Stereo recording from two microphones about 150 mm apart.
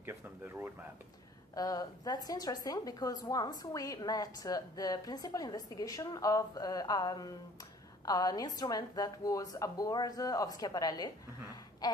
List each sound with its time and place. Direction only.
0.0 s speech: 15° right (ahead or behind)
1.5 s a woman's voice: 25° left (ahead or behind)
11.8 s a sound: 25° left (ahead or behind)